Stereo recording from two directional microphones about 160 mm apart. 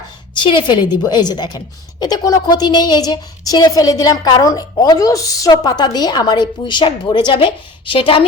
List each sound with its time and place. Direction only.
0.3 s a woman's voice: 30° left (ahead or behind)